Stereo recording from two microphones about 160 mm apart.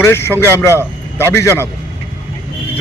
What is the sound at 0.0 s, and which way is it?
A man's voice, 15° left (ahead or behind).